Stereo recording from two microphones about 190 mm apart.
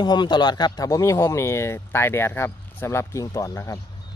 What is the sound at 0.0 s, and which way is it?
Speech, 20° left (ahead or behind).